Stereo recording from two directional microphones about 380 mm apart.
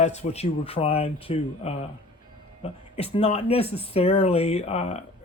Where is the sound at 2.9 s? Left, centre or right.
Centre.